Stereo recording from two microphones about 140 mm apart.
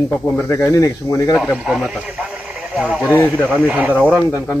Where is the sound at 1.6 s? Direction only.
Centre (ahead or behind).